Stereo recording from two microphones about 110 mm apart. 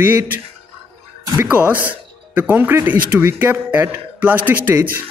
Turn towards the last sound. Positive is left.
turn(degrees=-20)  # may be behind; listen again after turning